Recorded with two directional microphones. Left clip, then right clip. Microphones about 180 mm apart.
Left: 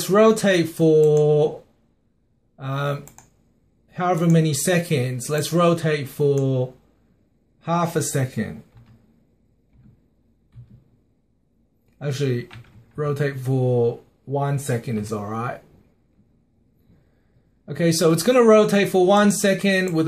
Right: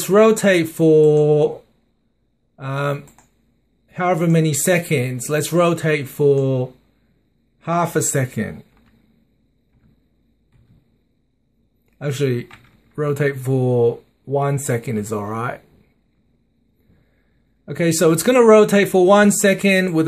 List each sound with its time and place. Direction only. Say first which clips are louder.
0.0 s speech: right 3 dB; 30° right (ahead or behind)
2.5 s speech: right 4 dB; 30° right (ahead or behind)
12.0 s speech: right 4 dB; 30° right (ahead or behind)
17.6 s speech: right 3 dB; 30° right (ahead or behind)